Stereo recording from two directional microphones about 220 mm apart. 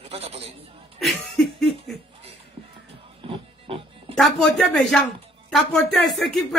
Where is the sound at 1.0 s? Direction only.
Centre (ahead or behind).